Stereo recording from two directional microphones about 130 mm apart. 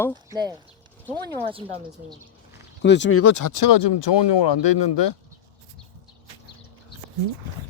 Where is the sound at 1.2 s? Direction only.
45° right (ahead or behind).